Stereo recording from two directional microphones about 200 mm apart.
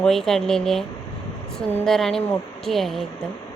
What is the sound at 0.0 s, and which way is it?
A woman's voice, centre (ahead or behind).